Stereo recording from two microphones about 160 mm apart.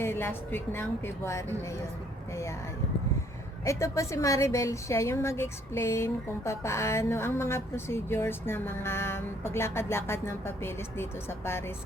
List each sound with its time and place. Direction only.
0.0 s a woman's voice: 15° left (ahead or behind)
3.6 s a woman's voice: 20° left (ahead or behind)